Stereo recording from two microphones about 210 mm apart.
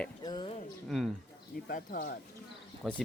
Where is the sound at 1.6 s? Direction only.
40° left (ahead or behind).